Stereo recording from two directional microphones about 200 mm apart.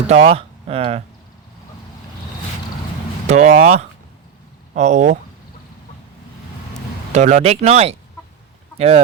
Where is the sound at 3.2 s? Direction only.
35° right (ahead or behind).